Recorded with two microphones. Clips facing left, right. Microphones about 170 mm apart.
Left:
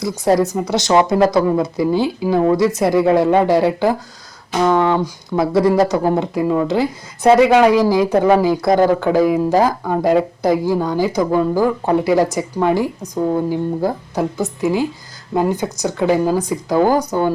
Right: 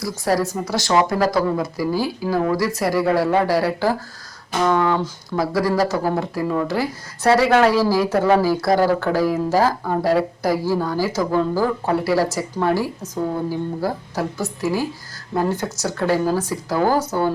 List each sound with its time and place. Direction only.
0.0 s speech: 20° left (ahead or behind)